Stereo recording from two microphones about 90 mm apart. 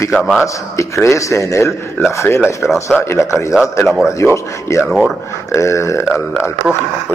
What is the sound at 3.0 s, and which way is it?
Speech, 30° left (ahead or behind).